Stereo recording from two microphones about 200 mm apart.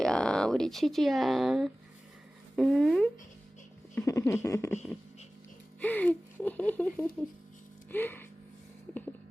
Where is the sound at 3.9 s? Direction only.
15° left (ahead or behind).